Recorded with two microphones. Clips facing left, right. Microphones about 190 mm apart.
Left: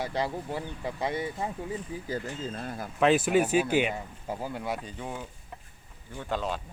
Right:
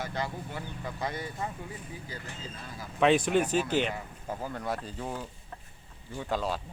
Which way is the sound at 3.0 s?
5° left (ahead or behind).